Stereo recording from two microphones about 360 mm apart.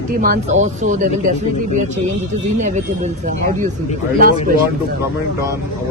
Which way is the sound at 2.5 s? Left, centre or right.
Centre.